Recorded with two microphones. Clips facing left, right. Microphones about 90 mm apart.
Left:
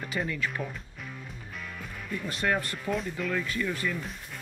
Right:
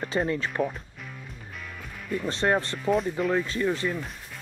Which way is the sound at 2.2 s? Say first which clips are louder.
Right 4 dB; 30° right (ahead or behind).